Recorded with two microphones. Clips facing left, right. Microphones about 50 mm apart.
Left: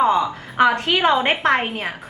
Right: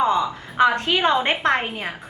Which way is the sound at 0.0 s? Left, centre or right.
Centre.